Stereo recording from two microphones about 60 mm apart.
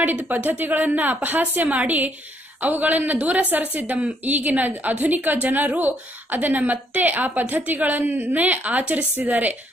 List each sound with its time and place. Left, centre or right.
0.1 s a woman's voice: right